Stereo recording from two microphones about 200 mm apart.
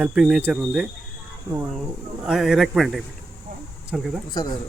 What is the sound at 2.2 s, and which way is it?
Speech, 5° right (ahead or behind).